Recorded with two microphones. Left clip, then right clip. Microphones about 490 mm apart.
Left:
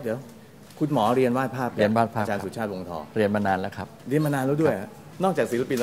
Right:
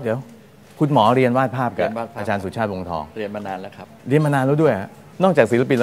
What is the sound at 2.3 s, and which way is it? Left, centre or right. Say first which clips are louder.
Speech: right 6 dB; right.